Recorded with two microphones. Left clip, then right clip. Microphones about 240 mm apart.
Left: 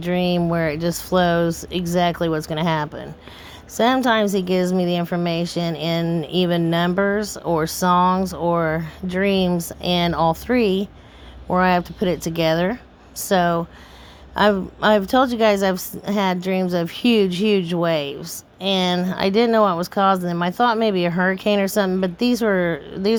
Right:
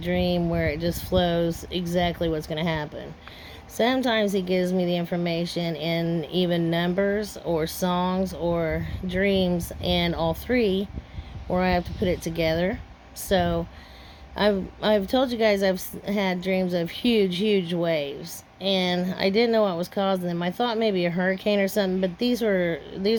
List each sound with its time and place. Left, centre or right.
0.0 s a woman's voice: left